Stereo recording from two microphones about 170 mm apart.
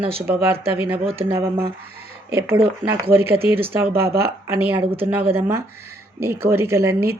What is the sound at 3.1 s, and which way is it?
A woman's voice, 15° right (ahead or behind).